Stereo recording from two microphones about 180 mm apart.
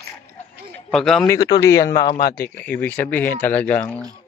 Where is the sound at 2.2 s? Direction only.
60° left (ahead or behind).